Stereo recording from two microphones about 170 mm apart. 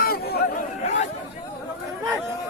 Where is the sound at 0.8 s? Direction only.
40° left (ahead or behind).